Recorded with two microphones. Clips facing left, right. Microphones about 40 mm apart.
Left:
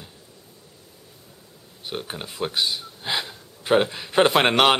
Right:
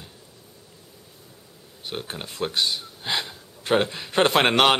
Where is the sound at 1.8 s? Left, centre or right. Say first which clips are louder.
Left 1 dB; centre.